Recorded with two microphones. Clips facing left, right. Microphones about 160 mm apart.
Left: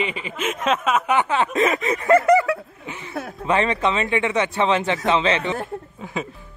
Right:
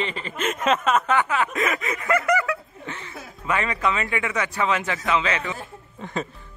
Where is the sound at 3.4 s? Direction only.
30° left (ahead or behind).